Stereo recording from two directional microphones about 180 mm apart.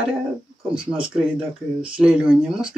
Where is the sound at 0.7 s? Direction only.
5° right (ahead or behind).